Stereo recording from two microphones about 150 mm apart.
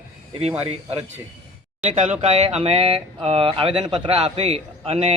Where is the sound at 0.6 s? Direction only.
40° right (ahead or behind).